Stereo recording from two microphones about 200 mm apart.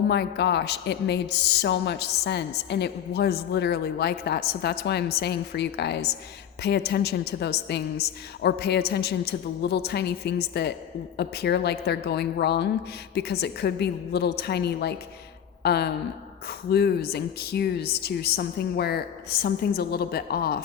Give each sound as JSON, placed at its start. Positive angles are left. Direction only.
{"t": 0.1, "sound": "a woman's voice", "side_deg": 55}